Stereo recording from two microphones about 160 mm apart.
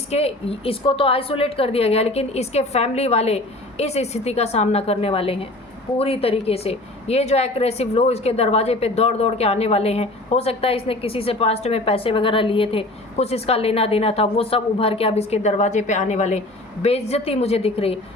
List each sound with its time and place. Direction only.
0.1 s a woman's voice: 40° left (ahead or behind)